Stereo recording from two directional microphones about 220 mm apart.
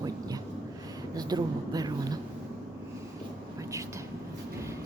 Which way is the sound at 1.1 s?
15° right (ahead or behind).